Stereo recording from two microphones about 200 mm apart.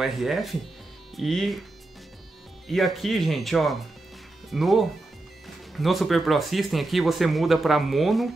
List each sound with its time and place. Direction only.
0.0 s speech: centre (ahead or behind)
2.7 s speech: centre (ahead or behind)